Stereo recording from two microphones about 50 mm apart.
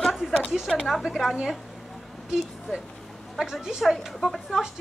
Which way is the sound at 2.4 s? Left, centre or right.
Centre.